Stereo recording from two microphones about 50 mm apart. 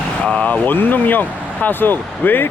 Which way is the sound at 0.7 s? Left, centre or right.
Left.